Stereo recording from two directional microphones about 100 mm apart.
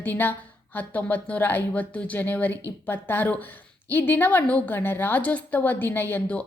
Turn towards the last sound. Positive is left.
turn(degrees=20)  # may be behind; listen again after turning